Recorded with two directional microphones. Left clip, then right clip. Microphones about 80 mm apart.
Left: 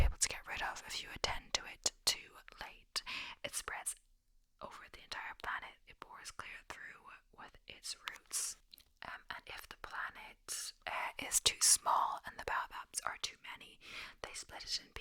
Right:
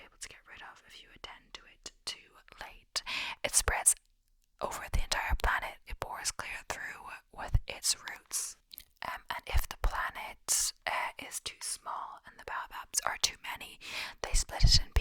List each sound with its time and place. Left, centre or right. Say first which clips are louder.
0.0 s whispering: left 10 dB; left
1.8 s whispering: left 4 dB; centre
2.5 s whispering: right 5 dB; centre; by 6.3 s right
6.3 s whispering: right 9 dB; right
8.3 s chewing: right 3 dB; right
8.7 s whispering: right 9 dB; right
11.2 s whispering: left 4 dB; centre
11.4 s whispering: left 10 dB; left
12.4 s whispering: right 1 dB; centre
12.8 s whispering: right 9 dB; right